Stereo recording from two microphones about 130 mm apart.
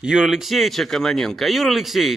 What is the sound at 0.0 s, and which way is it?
Speech, 5° right (ahead or behind).